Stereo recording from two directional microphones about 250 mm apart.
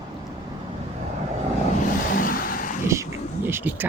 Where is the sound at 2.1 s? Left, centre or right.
Left.